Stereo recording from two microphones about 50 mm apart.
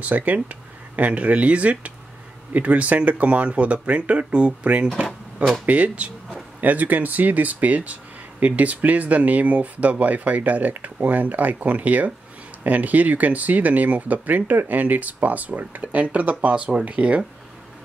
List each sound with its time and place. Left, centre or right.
0.1 s speech: right
5.7 s speech: right